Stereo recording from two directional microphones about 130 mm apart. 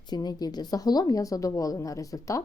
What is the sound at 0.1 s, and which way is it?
A woman's voice, 30° left (ahead or behind).